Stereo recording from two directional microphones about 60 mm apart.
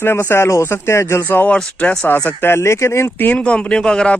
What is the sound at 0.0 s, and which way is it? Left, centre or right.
Speech, left.